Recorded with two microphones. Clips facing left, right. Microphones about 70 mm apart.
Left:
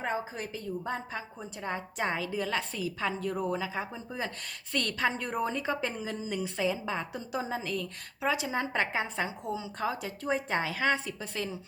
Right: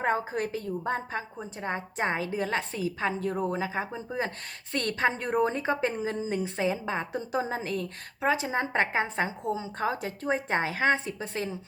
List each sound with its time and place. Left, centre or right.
0.0 s a woman's voice: right